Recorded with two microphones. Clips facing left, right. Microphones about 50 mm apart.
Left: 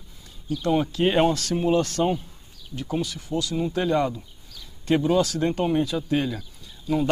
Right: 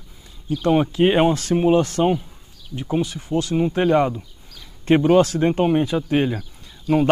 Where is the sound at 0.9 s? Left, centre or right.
Right.